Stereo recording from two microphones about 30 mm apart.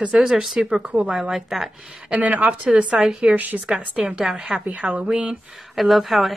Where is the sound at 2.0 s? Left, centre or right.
Right.